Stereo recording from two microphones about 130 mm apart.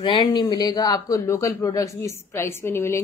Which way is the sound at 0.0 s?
35° left (ahead or behind).